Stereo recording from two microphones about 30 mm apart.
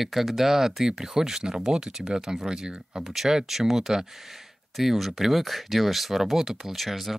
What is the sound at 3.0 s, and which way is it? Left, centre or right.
Speech, centre.